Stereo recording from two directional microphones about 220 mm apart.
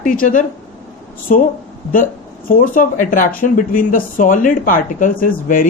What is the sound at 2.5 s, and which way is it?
Speech, 40° left (ahead or behind).